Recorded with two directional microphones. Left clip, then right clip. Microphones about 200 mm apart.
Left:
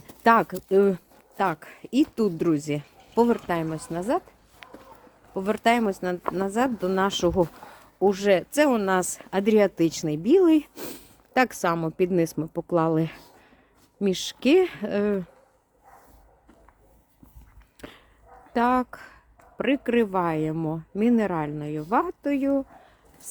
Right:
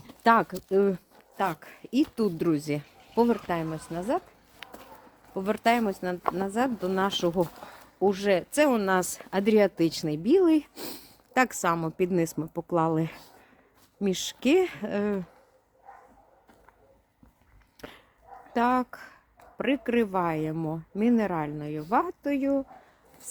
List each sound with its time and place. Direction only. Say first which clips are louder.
0.2 s speech: left 3 dB; 10° left (ahead or behind)
0.5 s speech: left 4 dB; 20° left (ahead or behind)
3.2 s speech: left 3 dB; 20° left (ahead or behind)
4.6 s a sound: right 1 dB; 40° right (ahead or behind)
5.3 s speech: left 2 dB; 15° left (ahead or behind)
17.7 s chop: left 1 dB; 15° left (ahead or behind)
18.5 s speech: left 2 dB; 15° left (ahead or behind)